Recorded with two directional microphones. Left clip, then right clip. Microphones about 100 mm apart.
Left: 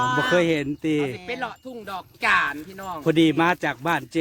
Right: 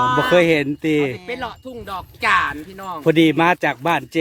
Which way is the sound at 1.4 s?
20° right (ahead or behind).